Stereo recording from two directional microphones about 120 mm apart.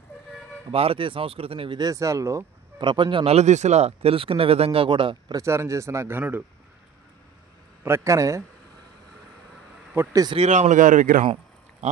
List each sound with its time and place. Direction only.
0.7 s speech: 50° right (ahead or behind)
1.8 s speech: 30° right (ahead or behind)
2.8 s speech: 40° right (ahead or behind)
3.3 s speech: 70° right (ahead or behind); by 5.4 s 45° right (ahead or behind)
5.4 s speech: 25° right (ahead or behind)
7.8 s speech: 25° right (ahead or behind)
9.9 s speech: 15° right (ahead or behind)
10.3 s speech: 70° right (ahead or behind); by 11.1 s 90° right